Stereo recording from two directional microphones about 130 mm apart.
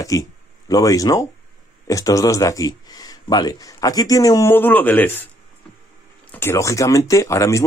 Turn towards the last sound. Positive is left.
turn(degrees=25)  # may be behind; listen again after turning